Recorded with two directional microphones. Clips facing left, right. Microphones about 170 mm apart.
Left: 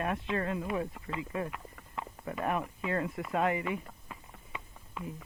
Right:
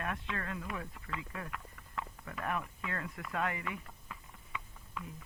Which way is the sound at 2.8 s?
25° left (ahead or behind).